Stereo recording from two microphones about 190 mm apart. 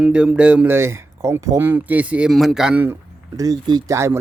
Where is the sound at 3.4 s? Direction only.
20° right (ahead or behind).